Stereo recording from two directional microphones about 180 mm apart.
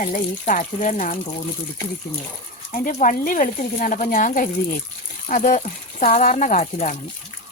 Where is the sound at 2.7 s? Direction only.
45° left (ahead or behind).